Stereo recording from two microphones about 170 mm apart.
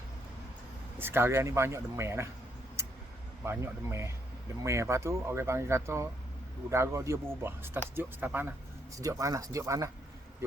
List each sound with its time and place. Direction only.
0.9 s speech: 15° right (ahead or behind)
3.4 s speech: 15° right (ahead or behind)